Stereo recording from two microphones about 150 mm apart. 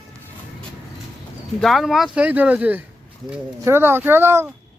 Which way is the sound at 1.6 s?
Centre (ahead or behind).